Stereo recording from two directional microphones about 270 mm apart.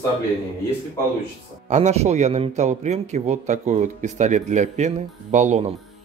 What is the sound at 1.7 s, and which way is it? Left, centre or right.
A man's voice, right.